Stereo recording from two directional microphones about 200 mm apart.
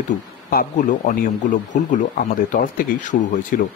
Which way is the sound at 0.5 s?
40° left (ahead or behind).